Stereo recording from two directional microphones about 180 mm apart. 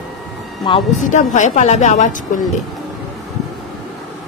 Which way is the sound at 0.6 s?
30° left (ahead or behind).